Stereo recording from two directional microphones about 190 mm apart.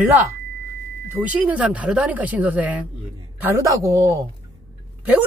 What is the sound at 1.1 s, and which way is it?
Speech, 10° right (ahead or behind).